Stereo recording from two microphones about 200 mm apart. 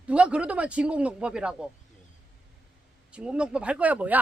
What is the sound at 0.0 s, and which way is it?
Speech, 5° right (ahead or behind).